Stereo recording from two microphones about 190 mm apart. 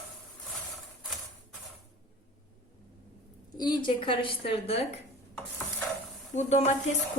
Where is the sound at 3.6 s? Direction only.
25° left (ahead or behind).